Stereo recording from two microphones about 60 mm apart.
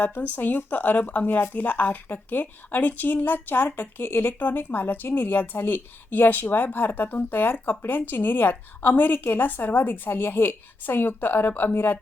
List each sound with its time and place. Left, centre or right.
0.2 s a woman's voice: left